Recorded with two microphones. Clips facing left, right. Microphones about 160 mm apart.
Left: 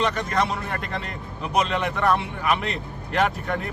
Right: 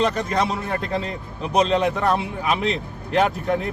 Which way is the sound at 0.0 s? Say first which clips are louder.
Right 2 dB; 30° right (ahead or behind).